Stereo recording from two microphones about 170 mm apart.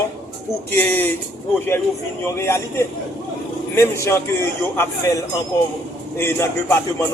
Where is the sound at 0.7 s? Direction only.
10° left (ahead or behind).